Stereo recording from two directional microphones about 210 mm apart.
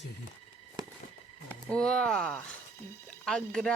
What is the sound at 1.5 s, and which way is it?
Speech, 5° left (ahead or behind).